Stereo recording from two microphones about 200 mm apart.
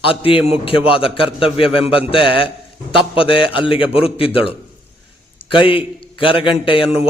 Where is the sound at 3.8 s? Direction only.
5° right (ahead or behind).